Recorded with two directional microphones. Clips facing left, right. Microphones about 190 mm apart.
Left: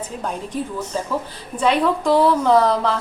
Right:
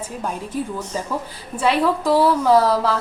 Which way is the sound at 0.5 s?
5° right (ahead or behind).